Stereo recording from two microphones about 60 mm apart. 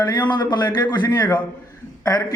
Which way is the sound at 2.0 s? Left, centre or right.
Left.